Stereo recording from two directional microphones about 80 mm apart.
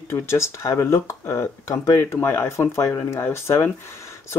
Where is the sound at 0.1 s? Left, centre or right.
Left.